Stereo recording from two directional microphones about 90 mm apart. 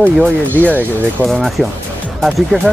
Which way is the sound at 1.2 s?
Centre (ahead or behind).